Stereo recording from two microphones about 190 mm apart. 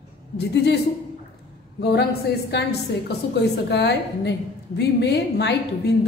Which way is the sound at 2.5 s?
65° left (ahead or behind).